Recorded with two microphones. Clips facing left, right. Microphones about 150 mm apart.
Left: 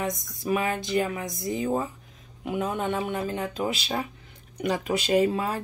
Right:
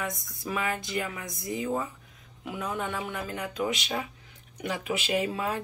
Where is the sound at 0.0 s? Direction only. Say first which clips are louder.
Left 5 dB; 20° left (ahead or behind).